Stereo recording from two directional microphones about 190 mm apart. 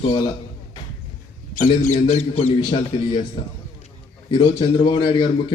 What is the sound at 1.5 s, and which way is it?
A man's voice, 40° left (ahead or behind).